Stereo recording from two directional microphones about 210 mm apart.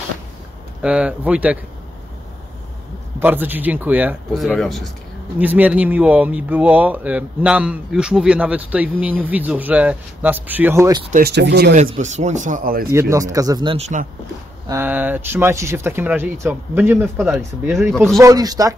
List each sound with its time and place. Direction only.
0.8 s speech: 5° right (ahead or behind)
3.2 s speech: 10° right (ahead or behind)
11.1 s speech: 40° right (ahead or behind)
11.3 s speech: 55° right (ahead or behind)
11.7 s speech: 35° right (ahead or behind)
13.1 s speech: 15° right (ahead or behind); by 14.0 s 30° right (ahead or behind)
14.7 s speech: 10° right (ahead or behind)
17.9 s speech: centre (ahead or behind)
18.2 s speech: 20° right (ahead or behind)